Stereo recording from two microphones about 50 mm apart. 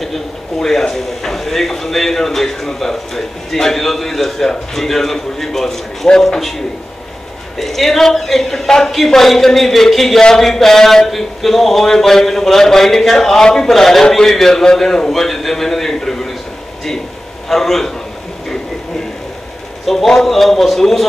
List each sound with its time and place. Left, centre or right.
0.0 s speech: centre
7.5 s a man's voice: centre
17.5 s speech: centre
19.9 s speech: centre